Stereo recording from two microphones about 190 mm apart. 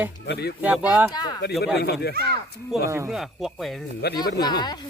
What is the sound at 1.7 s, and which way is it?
Speech, 60° left (ahead or behind).